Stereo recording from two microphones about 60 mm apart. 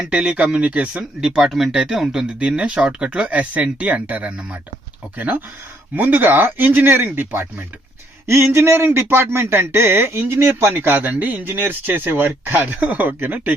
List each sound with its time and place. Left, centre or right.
0.1 s speech: centre
2.4 s speech: centre; by 7.4 s right
8.3 s speech: right